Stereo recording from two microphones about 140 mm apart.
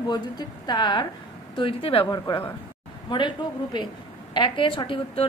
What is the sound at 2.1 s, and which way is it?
A woman's voice, 30° left (ahead or behind).